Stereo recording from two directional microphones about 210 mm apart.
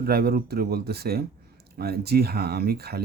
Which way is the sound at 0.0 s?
45° right (ahead or behind).